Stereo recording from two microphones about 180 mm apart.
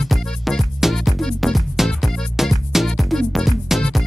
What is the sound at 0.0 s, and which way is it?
Music, 5° left (ahead or behind).